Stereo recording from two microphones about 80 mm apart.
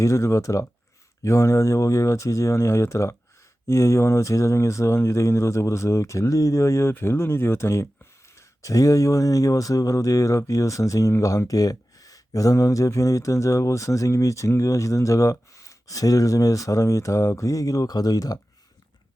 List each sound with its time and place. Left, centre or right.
0.0 s speech: left